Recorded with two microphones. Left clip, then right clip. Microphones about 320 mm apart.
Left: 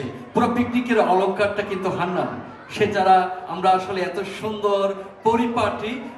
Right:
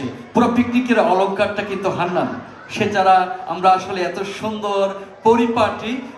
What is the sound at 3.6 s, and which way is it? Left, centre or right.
A man's voice, right.